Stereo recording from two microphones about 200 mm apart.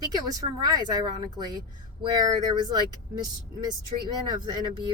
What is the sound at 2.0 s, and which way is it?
Speech, 20° right (ahead or behind).